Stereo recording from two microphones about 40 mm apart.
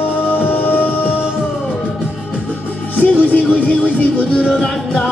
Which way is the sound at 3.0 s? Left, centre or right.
Left.